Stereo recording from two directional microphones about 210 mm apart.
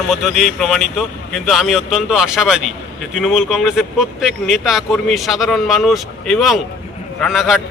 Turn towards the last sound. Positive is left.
turn(degrees=0)  # may be behind; listen again after turning